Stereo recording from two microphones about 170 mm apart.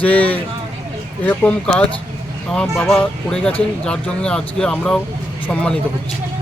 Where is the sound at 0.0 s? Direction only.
10° left (ahead or behind).